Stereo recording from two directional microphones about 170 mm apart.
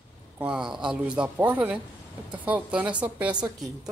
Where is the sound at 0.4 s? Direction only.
5° right (ahead or behind).